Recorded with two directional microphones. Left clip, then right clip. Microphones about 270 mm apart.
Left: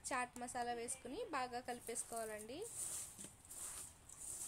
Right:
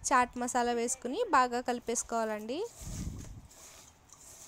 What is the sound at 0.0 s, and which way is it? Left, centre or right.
Speech, right.